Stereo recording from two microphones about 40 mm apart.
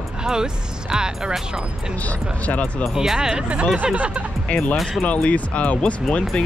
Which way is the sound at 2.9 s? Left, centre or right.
Centre.